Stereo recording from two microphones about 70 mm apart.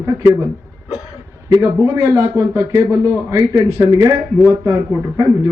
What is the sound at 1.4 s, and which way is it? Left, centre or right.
Speech, right.